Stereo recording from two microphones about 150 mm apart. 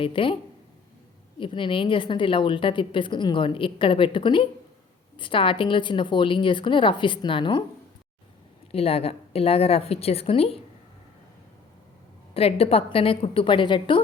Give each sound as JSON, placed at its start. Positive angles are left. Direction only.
{"t": 0.0, "sound": "a woman's voice", "side_deg": 35}
{"t": 1.4, "sound": "a woman's voice", "side_deg": 35}
{"t": 8.7, "sound": "a woman's voice", "side_deg": 40}
{"t": 12.3, "sound": "a woman's voice", "side_deg": 40}